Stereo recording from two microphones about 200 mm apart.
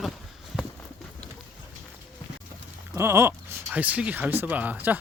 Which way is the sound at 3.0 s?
15° right (ahead or behind).